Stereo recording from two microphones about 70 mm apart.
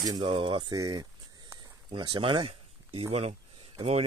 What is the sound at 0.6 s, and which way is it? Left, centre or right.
Speech, right.